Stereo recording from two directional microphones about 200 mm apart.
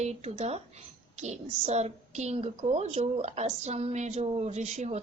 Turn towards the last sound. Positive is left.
turn(degrees=-35)  # may be behind; listen again after turning